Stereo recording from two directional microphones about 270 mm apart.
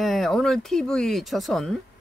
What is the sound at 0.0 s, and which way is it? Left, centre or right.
A woman's voice, centre.